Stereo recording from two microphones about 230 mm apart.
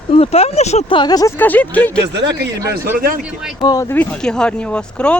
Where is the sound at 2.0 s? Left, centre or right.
Right.